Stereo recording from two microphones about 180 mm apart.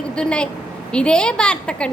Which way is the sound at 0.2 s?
5° left (ahead or behind).